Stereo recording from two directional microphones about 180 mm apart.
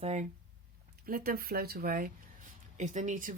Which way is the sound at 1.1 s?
55° right (ahead or behind).